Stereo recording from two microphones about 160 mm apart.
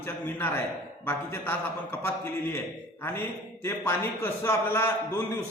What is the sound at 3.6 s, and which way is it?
A man's voice, 15° left (ahead or behind).